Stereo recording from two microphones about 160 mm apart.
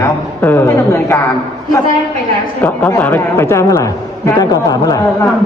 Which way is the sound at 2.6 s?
10° left (ahead or behind).